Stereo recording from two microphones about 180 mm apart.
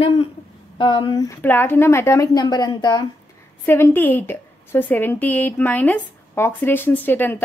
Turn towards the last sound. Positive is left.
turn(degrees=10)  # may be behind; listen again after turning